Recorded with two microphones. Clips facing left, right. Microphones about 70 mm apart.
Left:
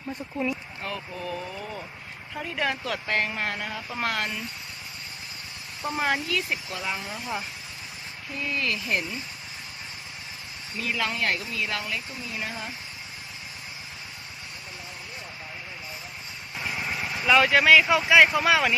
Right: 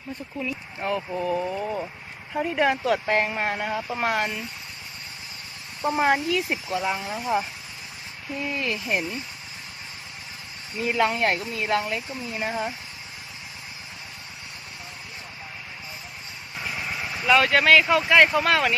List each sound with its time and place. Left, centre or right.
0.8 s speech: right
5.8 s speech: centre
8.4 s speech: centre
10.8 s speech: right
16.6 s vehicle: centre
17.2 s speech: centre